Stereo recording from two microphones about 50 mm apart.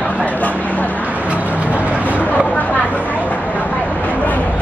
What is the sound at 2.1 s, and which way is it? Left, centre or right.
Vehicle, left.